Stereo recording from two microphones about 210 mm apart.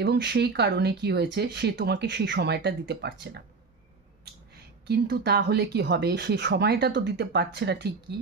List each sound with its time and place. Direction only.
0.0 s speech: 55° right (ahead or behind)
4.8 s speech: 50° right (ahead or behind)